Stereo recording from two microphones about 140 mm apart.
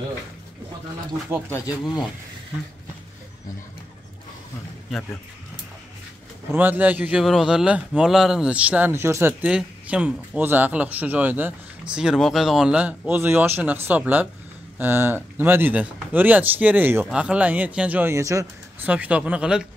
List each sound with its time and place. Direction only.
1.3 s speech: 15° right (ahead or behind)
6.5 s speech: 15° right (ahead or behind)
9.5 s speech: 5° right (ahead or behind); by 18.5 s 20° right (ahead or behind)
18.9 s speech: 10° right (ahead or behind)